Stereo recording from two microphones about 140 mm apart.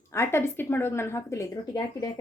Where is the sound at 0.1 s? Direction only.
20° left (ahead or behind).